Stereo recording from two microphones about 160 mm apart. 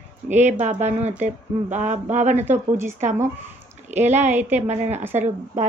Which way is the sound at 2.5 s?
15° right (ahead or behind).